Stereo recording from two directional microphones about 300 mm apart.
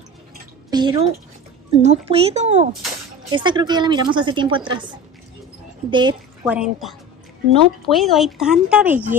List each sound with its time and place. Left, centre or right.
0.7 s speech: centre
5.9 s speech: centre
6.4 s speech: centre